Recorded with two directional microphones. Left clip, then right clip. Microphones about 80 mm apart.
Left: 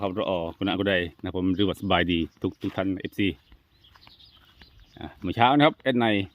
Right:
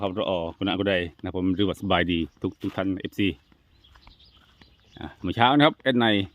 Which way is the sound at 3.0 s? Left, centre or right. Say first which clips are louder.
Right 1 dB; centre.